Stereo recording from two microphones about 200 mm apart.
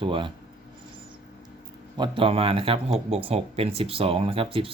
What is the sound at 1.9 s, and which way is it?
Speech, 25° right (ahead or behind).